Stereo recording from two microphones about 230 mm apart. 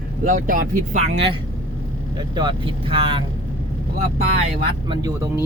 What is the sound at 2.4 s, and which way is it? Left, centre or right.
Speech, right.